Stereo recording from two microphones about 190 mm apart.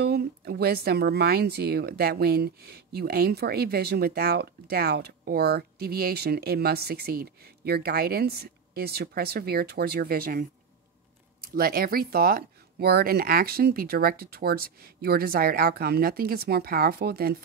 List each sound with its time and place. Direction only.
0.0 s speech: 55° right (ahead or behind)
11.4 s speech: 50° right (ahead or behind)